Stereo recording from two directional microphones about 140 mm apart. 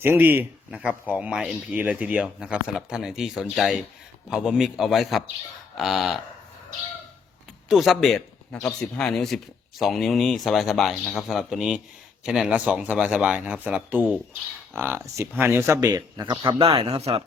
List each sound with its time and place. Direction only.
0.0 s speech: 15° right (ahead or behind)
5.7 s a sound: centre (ahead or behind)
7.7 s speech: centre (ahead or behind); by 17.1 s 45° right (ahead or behind)